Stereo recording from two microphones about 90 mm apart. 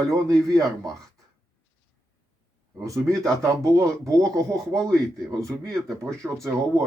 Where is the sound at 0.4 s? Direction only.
40° right (ahead or behind).